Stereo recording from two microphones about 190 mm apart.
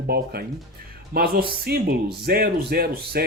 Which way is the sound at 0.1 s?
55° right (ahead or behind).